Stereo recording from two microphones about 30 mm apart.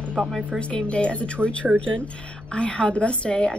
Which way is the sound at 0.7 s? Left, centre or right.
Left.